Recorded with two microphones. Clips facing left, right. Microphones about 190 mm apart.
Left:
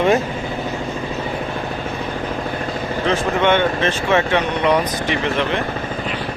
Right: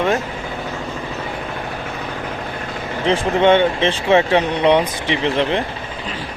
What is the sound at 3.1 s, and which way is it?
Speech, 30° right (ahead or behind).